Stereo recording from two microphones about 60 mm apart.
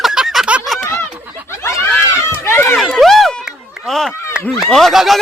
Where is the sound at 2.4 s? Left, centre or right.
Left.